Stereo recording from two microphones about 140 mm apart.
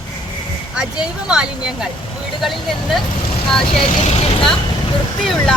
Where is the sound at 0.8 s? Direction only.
5° right (ahead or behind).